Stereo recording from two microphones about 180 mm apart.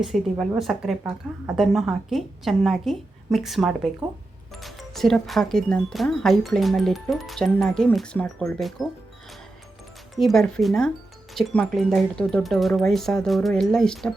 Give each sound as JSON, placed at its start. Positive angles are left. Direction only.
{"t": 0.0, "sound": "speech", "side_deg": 0}
{"t": 10.2, "sound": "speech", "side_deg": 0}